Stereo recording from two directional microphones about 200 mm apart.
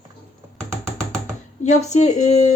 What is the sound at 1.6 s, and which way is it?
Speech, 35° left (ahead or behind).